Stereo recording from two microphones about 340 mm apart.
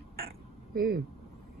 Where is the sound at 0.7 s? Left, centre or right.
Right.